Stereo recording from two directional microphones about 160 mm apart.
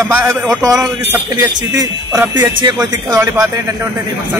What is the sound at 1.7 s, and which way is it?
Speech, 20° right (ahead or behind).